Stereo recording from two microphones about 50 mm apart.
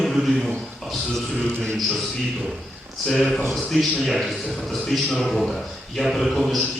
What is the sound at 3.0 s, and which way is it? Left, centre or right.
A man's voice, centre.